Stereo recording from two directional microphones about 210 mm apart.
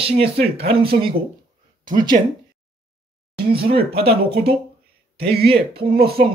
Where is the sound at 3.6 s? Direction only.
50° right (ahead or behind).